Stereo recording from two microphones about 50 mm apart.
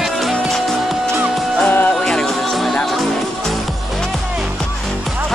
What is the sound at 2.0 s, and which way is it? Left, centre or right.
Music, centre.